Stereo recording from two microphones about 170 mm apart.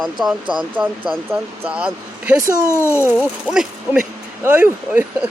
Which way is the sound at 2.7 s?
15° left (ahead or behind).